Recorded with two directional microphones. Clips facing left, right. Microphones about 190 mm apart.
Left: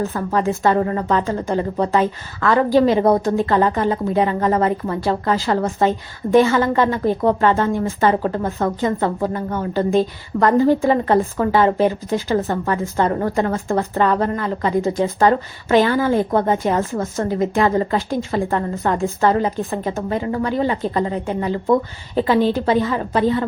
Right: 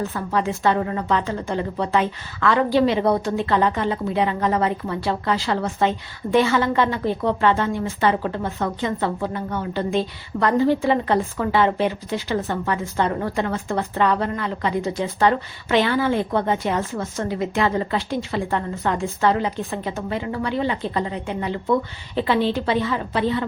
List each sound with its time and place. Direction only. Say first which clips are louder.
0.0 s a woman's voice: left 3 dB; 45° left (ahead or behind)